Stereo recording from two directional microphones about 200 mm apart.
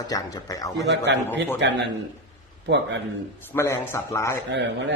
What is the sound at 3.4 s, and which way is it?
Speech, 15° left (ahead or behind).